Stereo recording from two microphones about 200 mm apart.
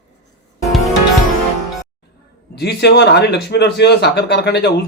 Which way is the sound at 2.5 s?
55° left (ahead or behind).